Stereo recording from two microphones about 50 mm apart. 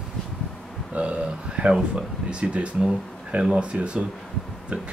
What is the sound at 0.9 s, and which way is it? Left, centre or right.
Speech, right.